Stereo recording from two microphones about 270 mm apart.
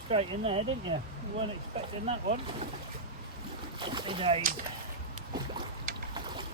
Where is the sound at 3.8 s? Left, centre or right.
Centre.